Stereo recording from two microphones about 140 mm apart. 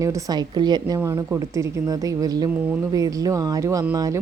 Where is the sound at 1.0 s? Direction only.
20° right (ahead or behind).